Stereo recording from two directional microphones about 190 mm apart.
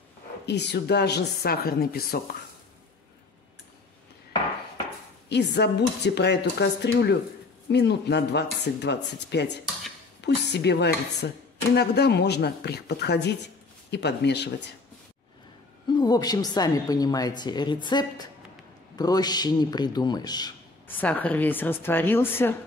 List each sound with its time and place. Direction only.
0.5 s speech: 60° left (ahead or behind)
5.3 s speech: 60° left (ahead or behind)
15.9 s a man's voice: 20° left (ahead or behind)
20.9 s a woman's voice: 10° left (ahead or behind)